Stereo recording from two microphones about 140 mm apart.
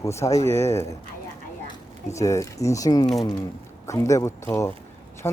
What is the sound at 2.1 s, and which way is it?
Speech, 20° left (ahead or behind).